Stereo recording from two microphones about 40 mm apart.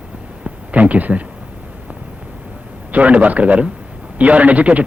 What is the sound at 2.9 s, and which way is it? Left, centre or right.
A man's voice, right.